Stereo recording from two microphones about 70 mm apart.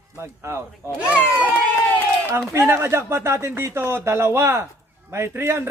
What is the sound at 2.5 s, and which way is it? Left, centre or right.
A man's voice, right.